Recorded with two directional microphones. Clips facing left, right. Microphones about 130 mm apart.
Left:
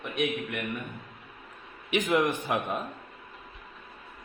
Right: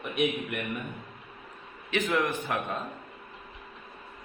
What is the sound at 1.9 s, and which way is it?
Speech, 15° left (ahead or behind).